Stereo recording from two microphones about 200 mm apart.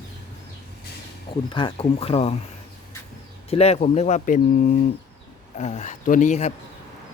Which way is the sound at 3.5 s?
30° left (ahead or behind).